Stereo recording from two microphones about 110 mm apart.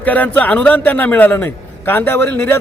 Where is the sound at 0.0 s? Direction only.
15° left (ahead or behind).